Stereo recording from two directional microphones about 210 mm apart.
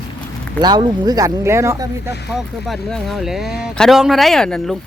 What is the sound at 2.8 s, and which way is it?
Speech, centre (ahead or behind).